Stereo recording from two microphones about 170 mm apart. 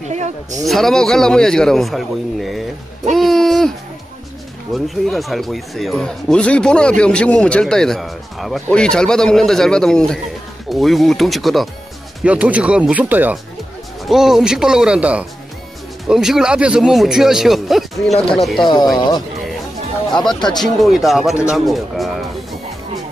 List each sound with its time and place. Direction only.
0.1 s speech: 45° right (ahead or behind)
0.7 s speech: centre (ahead or behind)
3.1 s a sound: centre (ahead or behind)
4.7 s speech: centre (ahead or behind)
18.6 s speech: 25° left (ahead or behind)
20.4 s speech: centre (ahead or behind)